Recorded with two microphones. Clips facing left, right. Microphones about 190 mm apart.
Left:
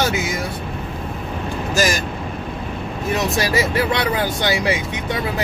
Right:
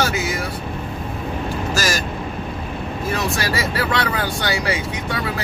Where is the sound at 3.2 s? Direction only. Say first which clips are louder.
Left 5 dB; 20° left (ahead or behind).